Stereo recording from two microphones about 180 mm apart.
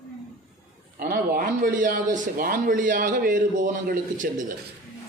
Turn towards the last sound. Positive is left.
turn(degrees=-45)  # may be behind; listen again after turning